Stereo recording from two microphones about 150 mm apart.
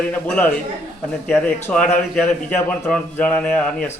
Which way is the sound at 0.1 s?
10° left (ahead or behind).